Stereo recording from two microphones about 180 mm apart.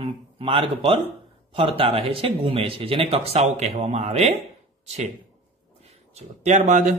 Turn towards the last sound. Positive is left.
turn(degrees=-45)  # may be behind; listen again after turning